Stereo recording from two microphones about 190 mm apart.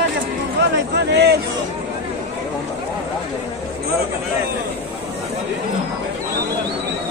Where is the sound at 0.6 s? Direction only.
60° right (ahead or behind).